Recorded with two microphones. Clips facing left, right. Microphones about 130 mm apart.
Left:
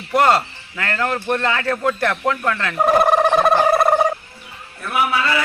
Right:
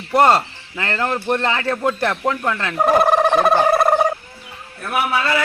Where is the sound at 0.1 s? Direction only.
25° right (ahead or behind).